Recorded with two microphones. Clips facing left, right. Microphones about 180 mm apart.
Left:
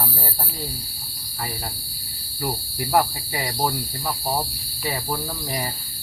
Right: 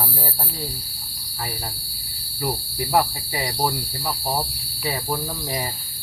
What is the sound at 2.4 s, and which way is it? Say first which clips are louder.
Cricket: right 1 dB; 10° right (ahead or behind).